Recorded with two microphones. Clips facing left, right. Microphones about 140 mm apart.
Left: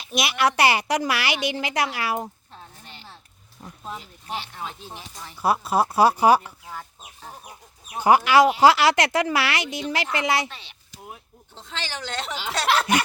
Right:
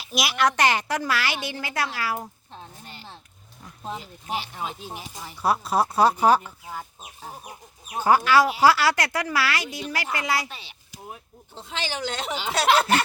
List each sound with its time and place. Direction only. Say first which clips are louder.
0.0 s a child's voice: left 1 dB; centre (ahead or behind); by 2.3 s 20° left (ahead or behind)
4.3 s speech: right 2 dB; 15° right (ahead or behind)
5.4 s speech: left 1 dB; centre (ahead or behind)
6.4 s speech: right 1 dB; 5° right (ahead or behind)
8.0 s a child's voice: left 2 dB; 15° left (ahead or behind)
10.5 s speech: right 1 dB; 5° right (ahead or behind)